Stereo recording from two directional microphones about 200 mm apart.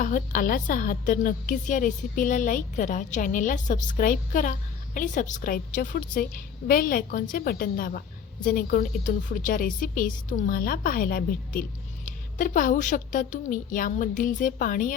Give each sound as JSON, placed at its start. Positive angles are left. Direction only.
{"t": 0.0, "sound": "a woman's voice", "side_deg": 40}